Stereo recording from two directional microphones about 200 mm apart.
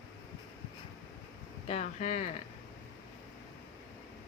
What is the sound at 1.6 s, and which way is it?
Speech, 35° left (ahead or behind).